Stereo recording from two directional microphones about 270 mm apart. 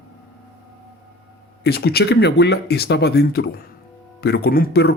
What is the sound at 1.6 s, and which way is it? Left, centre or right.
Speech, left.